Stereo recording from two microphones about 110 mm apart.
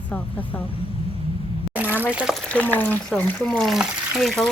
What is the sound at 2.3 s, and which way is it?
Speech, 10° left (ahead or behind).